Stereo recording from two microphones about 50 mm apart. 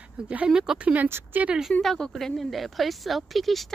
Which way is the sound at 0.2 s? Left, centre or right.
Centre.